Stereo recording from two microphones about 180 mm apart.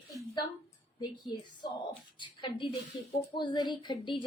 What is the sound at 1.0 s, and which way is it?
A woman's voice, 25° left (ahead or behind).